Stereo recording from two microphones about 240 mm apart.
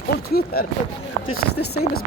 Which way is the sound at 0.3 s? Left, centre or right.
Left.